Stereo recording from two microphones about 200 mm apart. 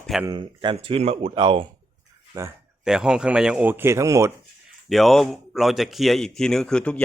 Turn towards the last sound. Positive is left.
turn(degrees=5)  # may be behind; listen again after turning